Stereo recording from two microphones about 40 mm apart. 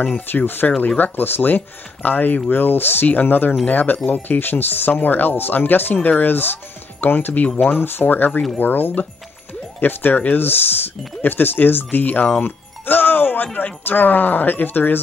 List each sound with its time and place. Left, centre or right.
0.0 s speech: left
0.6 s speech: left
0.9 s speech: left
2.5 s speech: left
12.4 s music: left
13.8 s speech: left